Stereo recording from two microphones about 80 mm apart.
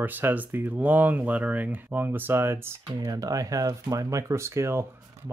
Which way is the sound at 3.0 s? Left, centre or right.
Right.